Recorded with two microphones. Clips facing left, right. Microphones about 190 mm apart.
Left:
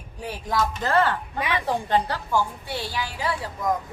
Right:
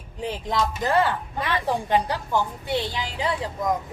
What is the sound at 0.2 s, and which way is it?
A woman's voice, 20° right (ahead or behind).